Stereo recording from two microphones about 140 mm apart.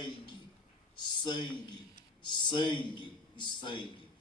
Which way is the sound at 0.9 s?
30° left (ahead or behind).